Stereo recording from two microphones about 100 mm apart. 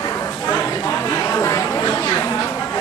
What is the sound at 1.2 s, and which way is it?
Chatter, 30° left (ahead or behind).